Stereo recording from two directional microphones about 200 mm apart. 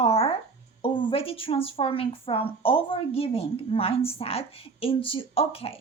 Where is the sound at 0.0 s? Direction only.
30° left (ahead or behind).